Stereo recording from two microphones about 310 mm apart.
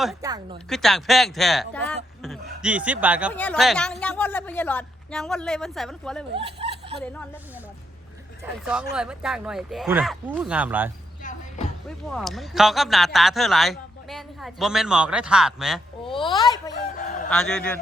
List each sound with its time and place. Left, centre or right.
0.2 s a woman's voice: centre
0.7 s a woman's voice: centre
6.3 s speech: centre
8.6 s a woman's voice: centre
11.2 s music: left
12.0 s a woman's voice: centre
16.0 s a woman's voice: centre
17.2 s a woman's voice: centre